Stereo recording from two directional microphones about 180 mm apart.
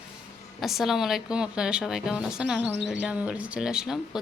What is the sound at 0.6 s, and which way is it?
A woman's voice, centre (ahead or behind).